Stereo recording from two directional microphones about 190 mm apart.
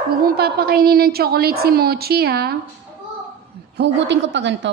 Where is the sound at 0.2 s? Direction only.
55° right (ahead or behind).